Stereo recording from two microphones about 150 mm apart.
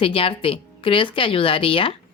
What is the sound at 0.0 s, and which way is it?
A woman's voice, 35° left (ahead or behind).